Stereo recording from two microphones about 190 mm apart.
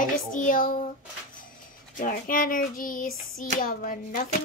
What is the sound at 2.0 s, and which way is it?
Speech, 45° left (ahead or behind).